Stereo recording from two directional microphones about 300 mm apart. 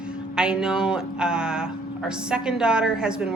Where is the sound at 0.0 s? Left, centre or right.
Centre.